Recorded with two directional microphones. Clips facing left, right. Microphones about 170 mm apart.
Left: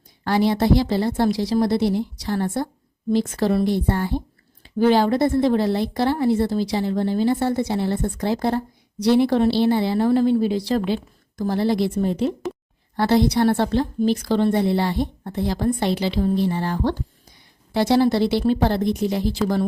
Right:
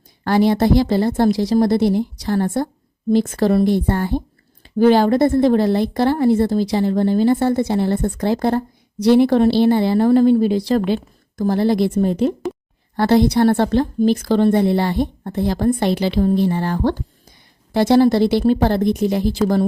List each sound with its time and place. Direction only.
0.3 s a woman's voice: 50° right (ahead or behind)